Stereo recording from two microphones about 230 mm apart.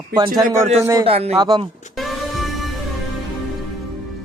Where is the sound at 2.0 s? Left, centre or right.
Centre.